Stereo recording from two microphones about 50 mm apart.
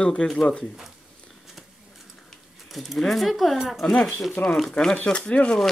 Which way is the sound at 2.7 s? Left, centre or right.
Centre.